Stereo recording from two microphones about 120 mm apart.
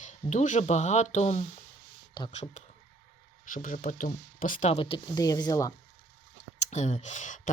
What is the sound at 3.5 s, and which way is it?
Speech, 90° left.